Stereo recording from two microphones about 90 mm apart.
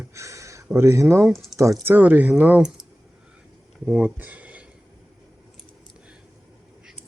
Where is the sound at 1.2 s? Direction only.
Centre (ahead or behind).